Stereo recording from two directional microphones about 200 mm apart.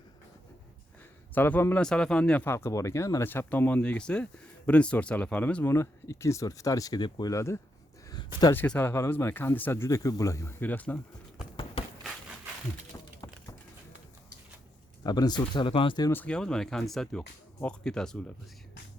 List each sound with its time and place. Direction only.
1.3 s speech: 10° left (ahead or behind)
8.1 s a sound: 20° left (ahead or behind)
8.6 s speech: 10° left (ahead or behind)
11.8 s a sound: 25° left (ahead or behind)
12.9 s typing: 15° left (ahead or behind)
15.0 s speech: 20° left (ahead or behind)
16.1 s speech: 5° left (ahead or behind)